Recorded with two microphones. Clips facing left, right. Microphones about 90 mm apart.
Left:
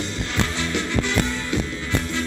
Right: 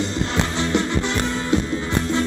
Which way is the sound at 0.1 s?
25° right (ahead or behind).